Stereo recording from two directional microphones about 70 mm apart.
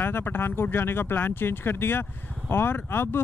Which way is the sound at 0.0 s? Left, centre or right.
Left.